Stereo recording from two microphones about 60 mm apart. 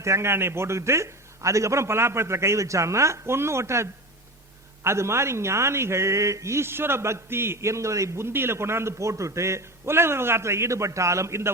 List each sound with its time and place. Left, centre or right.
0.0 s a man's voice: right